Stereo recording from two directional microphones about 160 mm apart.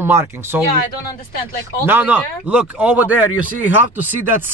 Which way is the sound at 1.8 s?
10° right (ahead or behind).